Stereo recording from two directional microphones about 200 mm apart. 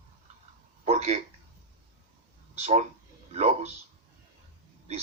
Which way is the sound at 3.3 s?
35° right (ahead or behind).